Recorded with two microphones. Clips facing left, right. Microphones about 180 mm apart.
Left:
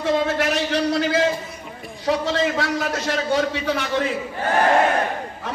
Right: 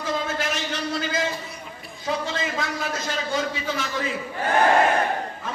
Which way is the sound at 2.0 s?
70° left (ahead or behind).